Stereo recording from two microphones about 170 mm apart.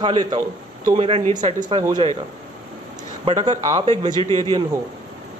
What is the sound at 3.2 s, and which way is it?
Speech, 30° right (ahead or behind).